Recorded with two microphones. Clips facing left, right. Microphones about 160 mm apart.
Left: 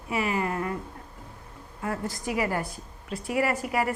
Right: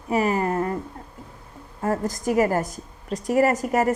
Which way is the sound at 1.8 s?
40° right (ahead or behind).